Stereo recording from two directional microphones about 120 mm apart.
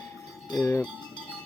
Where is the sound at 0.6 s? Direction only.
20° left (ahead or behind).